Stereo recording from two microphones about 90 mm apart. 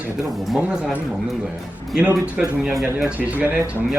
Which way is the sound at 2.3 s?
5° right (ahead or behind).